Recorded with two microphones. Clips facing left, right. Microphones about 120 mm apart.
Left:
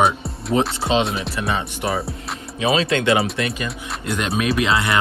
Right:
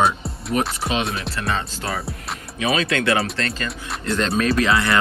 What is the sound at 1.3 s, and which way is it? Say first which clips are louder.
Speech: left 2 dB; 20° left (ahead or behind).